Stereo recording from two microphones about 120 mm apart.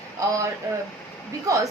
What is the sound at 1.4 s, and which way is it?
Speech, 25° right (ahead or behind).